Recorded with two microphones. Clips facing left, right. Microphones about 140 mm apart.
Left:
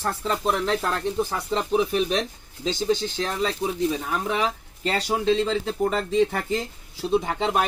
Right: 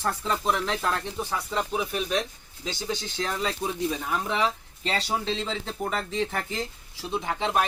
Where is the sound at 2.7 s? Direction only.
25° left (ahead or behind).